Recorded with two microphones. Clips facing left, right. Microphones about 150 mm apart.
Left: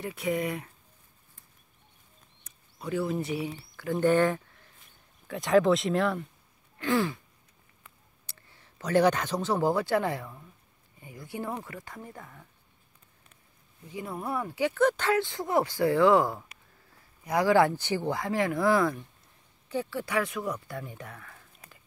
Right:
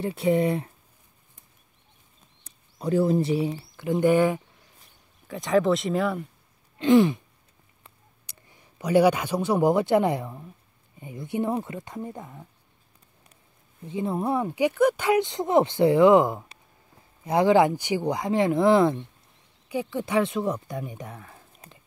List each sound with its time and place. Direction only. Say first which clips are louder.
0.0 s speech: right 7 dB; 30° right (ahead or behind)
2.4 s speech: right 8 dB; 35° right (ahead or behind); by 4.4 s 10° right (ahead or behind)
5.3 s speech: even; centre (ahead or behind)
6.8 s speech: right 9 dB; 20° right (ahead or behind)
8.3 s speech: right 2 dB; 15° right (ahead or behind)
13.8 s speech: right 8 dB; 25° right (ahead or behind)